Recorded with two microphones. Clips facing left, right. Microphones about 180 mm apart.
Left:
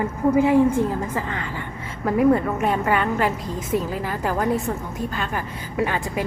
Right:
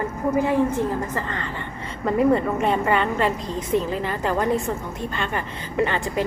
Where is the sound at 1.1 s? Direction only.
10° left (ahead or behind).